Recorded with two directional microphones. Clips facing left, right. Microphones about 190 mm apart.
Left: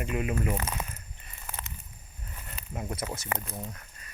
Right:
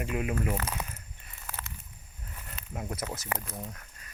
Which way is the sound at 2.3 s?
Centre (ahead or behind).